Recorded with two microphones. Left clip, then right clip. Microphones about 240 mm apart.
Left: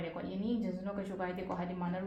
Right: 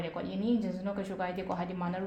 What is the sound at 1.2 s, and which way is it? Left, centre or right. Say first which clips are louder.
Speech: right 4 dB; right.